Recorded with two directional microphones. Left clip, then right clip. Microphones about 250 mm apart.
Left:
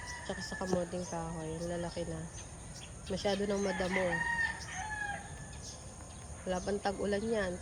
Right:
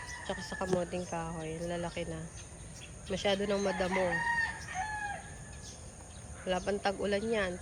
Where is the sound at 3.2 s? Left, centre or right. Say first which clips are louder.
Right 2 dB; centre.